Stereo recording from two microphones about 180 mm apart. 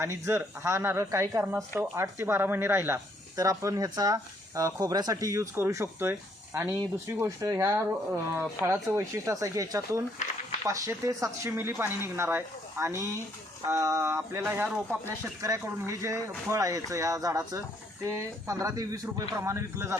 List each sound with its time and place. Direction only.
0.0 s speech: 15° right (ahead or behind)
10.2 s speech: 45° left (ahead or behind)
10.7 s speech: 15° right (ahead or behind)